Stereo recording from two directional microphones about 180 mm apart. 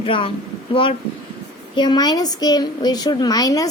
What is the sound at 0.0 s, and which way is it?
A woman's voice, 30° left (ahead or behind).